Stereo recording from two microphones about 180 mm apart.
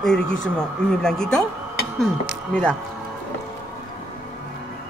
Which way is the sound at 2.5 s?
5° left (ahead or behind).